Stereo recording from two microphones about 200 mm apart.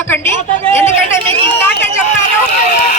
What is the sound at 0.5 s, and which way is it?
Speech, 30° right (ahead or behind).